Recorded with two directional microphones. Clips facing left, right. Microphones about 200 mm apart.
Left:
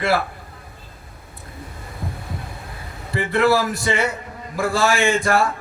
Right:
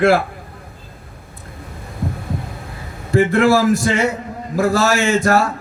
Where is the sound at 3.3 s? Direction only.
45° right (ahead or behind).